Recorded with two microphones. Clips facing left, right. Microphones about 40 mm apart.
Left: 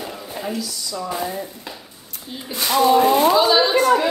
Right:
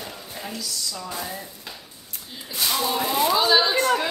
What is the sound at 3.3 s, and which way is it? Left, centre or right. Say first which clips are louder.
Speech: left 4 dB; centre.